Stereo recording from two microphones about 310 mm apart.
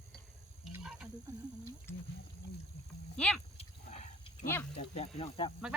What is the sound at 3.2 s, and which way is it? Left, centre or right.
Speech, centre.